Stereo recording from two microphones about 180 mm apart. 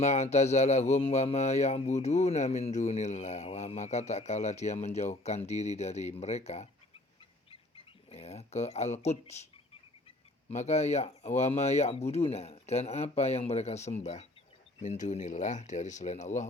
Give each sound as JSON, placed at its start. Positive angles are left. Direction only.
{"t": 0.0, "sound": "speech", "side_deg": 40}
{"t": 8.1, "sound": "speech", "side_deg": 35}
{"t": 10.5, "sound": "speech", "side_deg": 40}